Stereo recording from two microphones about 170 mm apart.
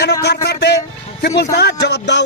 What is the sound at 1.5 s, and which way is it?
Speech, 85° left.